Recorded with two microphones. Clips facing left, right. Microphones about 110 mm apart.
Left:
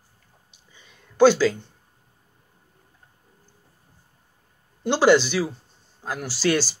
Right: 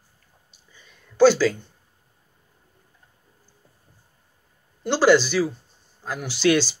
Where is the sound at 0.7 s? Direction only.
15° left (ahead or behind).